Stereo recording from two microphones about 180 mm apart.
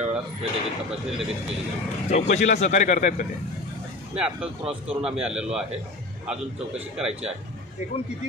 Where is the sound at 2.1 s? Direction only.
40° left (ahead or behind).